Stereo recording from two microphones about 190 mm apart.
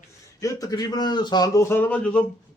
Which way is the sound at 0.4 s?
20° left (ahead or behind).